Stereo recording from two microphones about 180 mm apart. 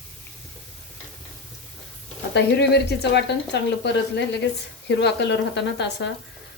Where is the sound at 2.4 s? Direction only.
70° left (ahead or behind).